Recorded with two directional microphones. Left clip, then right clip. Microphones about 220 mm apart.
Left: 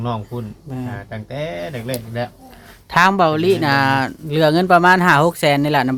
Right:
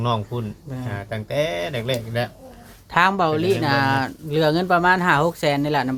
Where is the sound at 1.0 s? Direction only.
50° right (ahead or behind).